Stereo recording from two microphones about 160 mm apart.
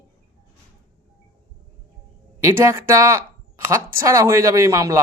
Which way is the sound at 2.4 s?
20° right (ahead or behind).